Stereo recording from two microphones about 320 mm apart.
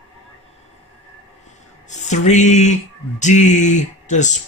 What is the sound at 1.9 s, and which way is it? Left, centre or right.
Music, left.